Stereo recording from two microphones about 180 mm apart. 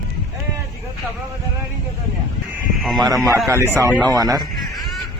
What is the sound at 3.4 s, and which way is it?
A man's voice, 15° right (ahead or behind).